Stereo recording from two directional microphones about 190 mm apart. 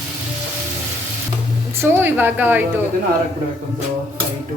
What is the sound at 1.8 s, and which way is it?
Speech, 10° right (ahead or behind).